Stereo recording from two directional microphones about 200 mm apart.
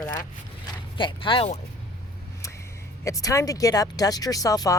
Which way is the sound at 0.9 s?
25° left (ahead or behind).